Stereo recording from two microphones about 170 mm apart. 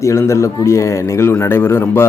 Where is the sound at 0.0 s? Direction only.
15° left (ahead or behind).